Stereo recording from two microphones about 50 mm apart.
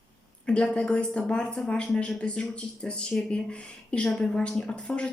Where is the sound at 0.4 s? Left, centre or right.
Centre.